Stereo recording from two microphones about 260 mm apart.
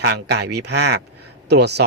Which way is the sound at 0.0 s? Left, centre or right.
Right.